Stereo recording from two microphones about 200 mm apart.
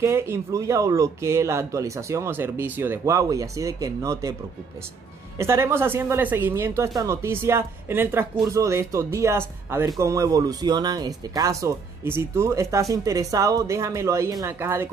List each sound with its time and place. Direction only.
0.0 s speech: 15° right (ahead or behind)
5.4 s speech: 15° right (ahead or behind)